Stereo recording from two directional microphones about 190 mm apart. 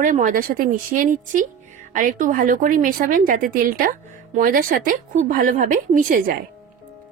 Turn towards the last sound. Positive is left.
turn(degrees=-45)  # may be behind; listen again after turning